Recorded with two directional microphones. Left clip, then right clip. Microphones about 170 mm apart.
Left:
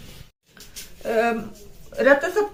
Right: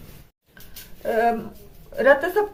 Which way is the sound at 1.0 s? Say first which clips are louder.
Right 1 dB; 30° right (ahead or behind).